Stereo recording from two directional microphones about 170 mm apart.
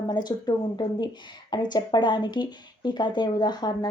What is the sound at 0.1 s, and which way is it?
Speech, 25° left (ahead or behind).